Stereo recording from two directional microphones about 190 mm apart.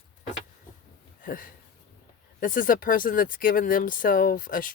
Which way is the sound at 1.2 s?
45° left (ahead or behind).